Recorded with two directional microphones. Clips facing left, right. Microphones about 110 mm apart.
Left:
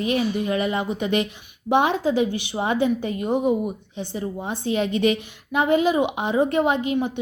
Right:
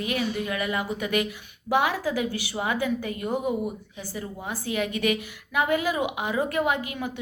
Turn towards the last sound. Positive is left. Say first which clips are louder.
# left 7 dB
turn(degrees=25)  # may be behind; listen again after turning